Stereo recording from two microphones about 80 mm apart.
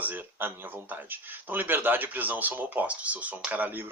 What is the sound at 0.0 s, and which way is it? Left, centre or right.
Speech, right.